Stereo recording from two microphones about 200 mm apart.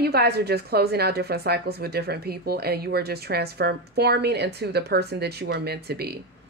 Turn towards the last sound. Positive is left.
turn(degrees=-50)  # may be behind; listen again after turning